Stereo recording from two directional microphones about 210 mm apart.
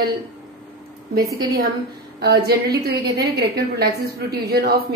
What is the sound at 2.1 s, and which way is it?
A woman's voice, 50° right (ahead or behind).